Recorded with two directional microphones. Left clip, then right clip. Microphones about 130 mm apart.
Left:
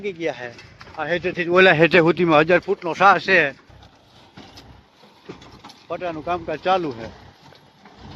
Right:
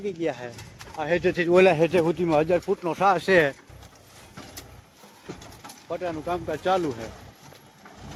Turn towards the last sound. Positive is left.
turn(degrees=-5)  # may be behind; listen again after turning